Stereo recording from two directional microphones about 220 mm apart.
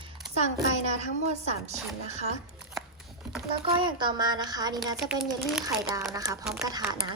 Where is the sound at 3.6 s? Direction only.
20° right (ahead or behind).